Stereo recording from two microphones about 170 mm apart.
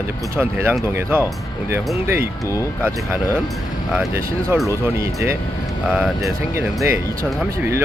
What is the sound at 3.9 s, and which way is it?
Speech, 15° right (ahead or behind).